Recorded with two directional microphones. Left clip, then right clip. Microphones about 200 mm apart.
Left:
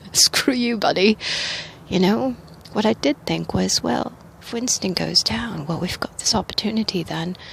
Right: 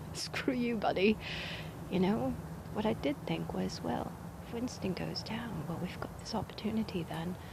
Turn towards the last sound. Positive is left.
turn(degrees=50)  # may be behind; listen again after turning